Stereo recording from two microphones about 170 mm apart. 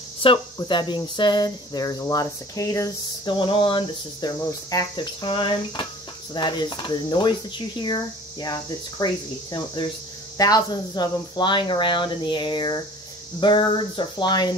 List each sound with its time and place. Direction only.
0.2 s speech: 30° left (ahead or behind)
3.3 s speech: 30° left (ahead or behind)